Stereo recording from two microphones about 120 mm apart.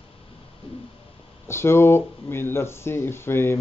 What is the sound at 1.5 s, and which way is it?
Speech, 20° left (ahead or behind).